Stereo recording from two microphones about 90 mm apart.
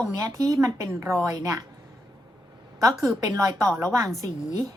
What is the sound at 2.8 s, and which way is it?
Speech, 40° right (ahead or behind).